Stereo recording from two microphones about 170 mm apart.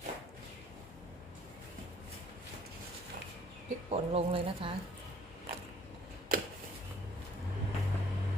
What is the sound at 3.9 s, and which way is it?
Speech, 35° right (ahead or behind).